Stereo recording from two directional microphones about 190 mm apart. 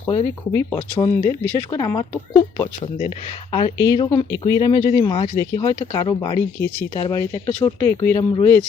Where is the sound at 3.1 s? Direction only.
25° left (ahead or behind).